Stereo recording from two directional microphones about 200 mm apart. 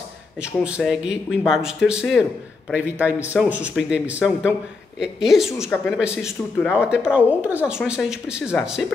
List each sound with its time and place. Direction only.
0.4 s speech: 5° right (ahead or behind)
3.3 s speech: 5° right (ahead or behind)